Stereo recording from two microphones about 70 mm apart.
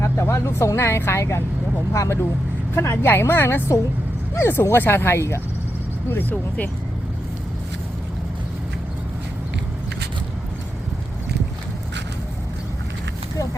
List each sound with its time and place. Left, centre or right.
0.0 s a sound: left
0.8 s speech: left
6.1 s speech: left